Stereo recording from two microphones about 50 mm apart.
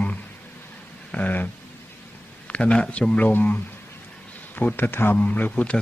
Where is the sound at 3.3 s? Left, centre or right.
Left.